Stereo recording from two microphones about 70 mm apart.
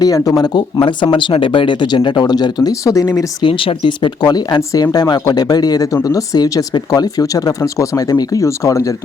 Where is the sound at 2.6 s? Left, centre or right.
Left.